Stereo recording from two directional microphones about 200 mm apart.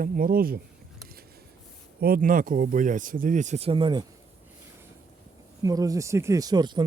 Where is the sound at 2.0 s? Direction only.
45° right (ahead or behind); by 4.1 s 25° right (ahead or behind).